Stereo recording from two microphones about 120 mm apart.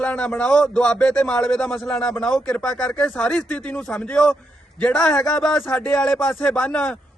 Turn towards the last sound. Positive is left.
turn(degrees=10)  # may be behind; listen again after turning